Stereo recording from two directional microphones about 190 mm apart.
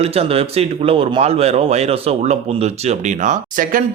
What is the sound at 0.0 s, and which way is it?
Speech, 30° right (ahead or behind).